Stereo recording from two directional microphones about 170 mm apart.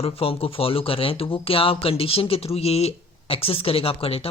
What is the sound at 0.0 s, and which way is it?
Speech, 35° left (ahead or behind).